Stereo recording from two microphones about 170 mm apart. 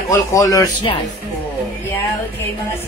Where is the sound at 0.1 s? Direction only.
20° left (ahead or behind).